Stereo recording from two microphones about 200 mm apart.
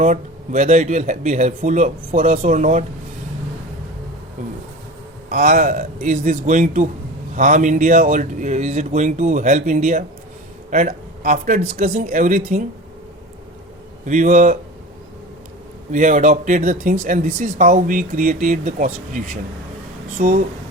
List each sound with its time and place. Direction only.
0.0 s speech: 40° right (ahead or behind)
5.3 s speech: 45° right (ahead or behind)
14.0 s speech: 40° right (ahead or behind)
15.9 s speech: 40° right (ahead or behind)